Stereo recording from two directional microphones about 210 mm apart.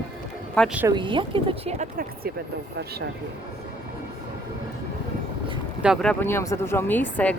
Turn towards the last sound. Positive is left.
turn(degrees=10)  # may be behind; listen again after turning